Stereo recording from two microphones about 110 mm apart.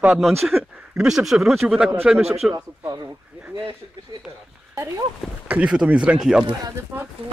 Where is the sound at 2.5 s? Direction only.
35° right (ahead or behind).